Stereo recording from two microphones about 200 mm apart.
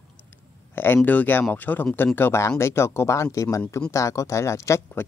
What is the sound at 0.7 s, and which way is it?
Speech, 10° left (ahead or behind).